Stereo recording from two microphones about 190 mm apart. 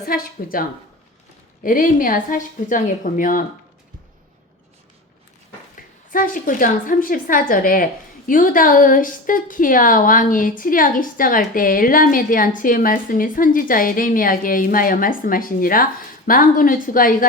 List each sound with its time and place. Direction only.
0.0 s a woman's voice: 50° left (ahead or behind)
1.6 s a woman's voice: 45° left (ahead or behind)
6.1 s a woman's voice: 45° left (ahead or behind)